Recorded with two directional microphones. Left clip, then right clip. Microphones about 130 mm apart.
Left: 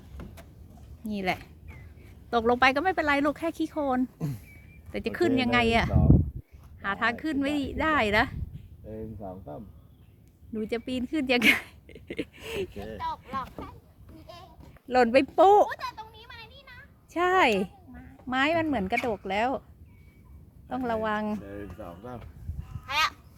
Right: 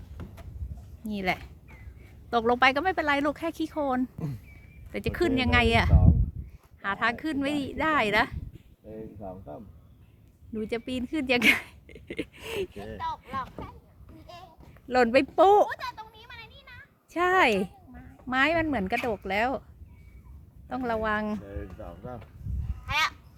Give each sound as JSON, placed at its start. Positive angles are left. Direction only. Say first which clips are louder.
{"t": 0.2, "sound": "a sound", "louder": "even", "side_deg": 5}
{"t": 1.0, "sound": "speech", "louder": "right 1 dB", "side_deg": -5}
{"t": 4.2, "sound": "speech", "louder": "left 1 dB", "side_deg": 60}
{"t": 4.9, "sound": "speech", "louder": "left 1 dB", "side_deg": -5}
{"t": 8.9, "sound": "speech", "louder": "left 1 dB", "side_deg": 35}
{"t": 10.5, "sound": "speech", "louder": "even", "side_deg": 0}
{"t": 14.3, "sound": "a sound", "louder": "right 1 dB", "side_deg": 0}
{"t": 14.8, "sound": "a woman's voice", "louder": "left 1 dB", "side_deg": -10}
{"t": 15.4, "sound": "a sound", "louder": "left 1 dB", "side_deg": -5}
{"t": 18.3, "sound": "a woman's voice", "louder": "right 1 dB", "side_deg": -10}
{"t": 20.7, "sound": "a woman's voice", "louder": "even", "side_deg": -10}
{"t": 21.4, "sound": "speech", "louder": "left 1 dB", "side_deg": 60}
{"t": 22.9, "sound": "crow", "louder": "even", "side_deg": 0}